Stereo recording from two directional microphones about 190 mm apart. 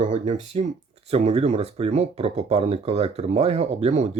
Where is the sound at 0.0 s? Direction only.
40° right (ahead or behind).